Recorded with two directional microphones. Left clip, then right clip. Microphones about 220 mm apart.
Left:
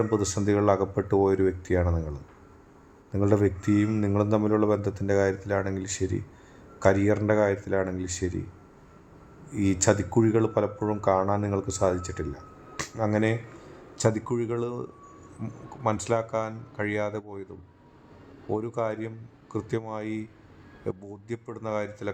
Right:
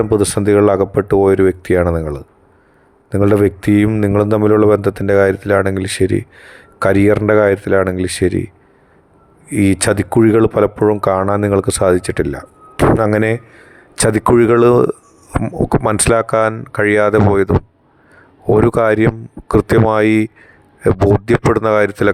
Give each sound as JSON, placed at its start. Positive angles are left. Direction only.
{"t": 0.0, "sound": "speech", "side_deg": -45}
{"t": 9.5, "sound": "speech", "side_deg": -45}
{"t": 18.5, "sound": "speech", "side_deg": -50}